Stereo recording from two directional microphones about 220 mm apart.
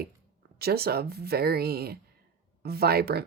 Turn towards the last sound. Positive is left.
turn(degrees=-45)  # may be behind; listen again after turning